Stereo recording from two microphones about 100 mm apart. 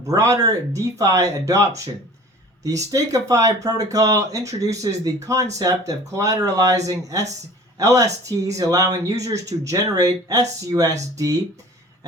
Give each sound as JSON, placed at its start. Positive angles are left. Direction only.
{"t": 0.1, "sound": "speech", "side_deg": -35}
{"t": 2.9, "sound": "speech", "side_deg": -35}